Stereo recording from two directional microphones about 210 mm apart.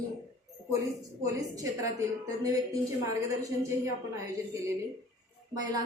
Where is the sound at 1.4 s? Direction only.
15° right (ahead or behind).